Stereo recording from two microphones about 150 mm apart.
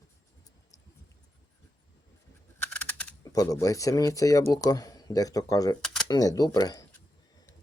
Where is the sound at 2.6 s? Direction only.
10° left (ahead or behind).